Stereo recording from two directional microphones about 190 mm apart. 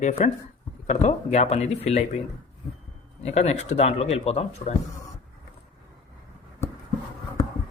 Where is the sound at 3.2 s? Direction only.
35° left (ahead or behind).